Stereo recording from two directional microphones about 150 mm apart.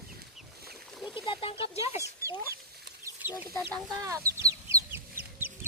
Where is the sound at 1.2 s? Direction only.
35° left (ahead or behind).